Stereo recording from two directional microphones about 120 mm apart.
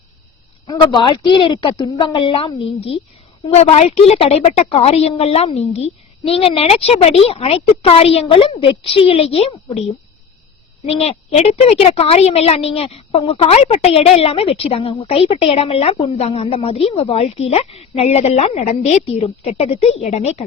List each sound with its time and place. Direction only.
0.7 s a woman's voice: 35° left (ahead or behind); by 9.5 s 55° left (ahead or behind)
10.8 s a woman's voice: 55° left (ahead or behind)